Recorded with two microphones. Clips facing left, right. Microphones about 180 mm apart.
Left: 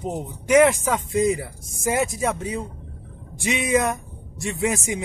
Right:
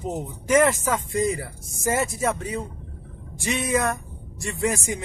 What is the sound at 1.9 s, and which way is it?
Speech, 15° left (ahead or behind).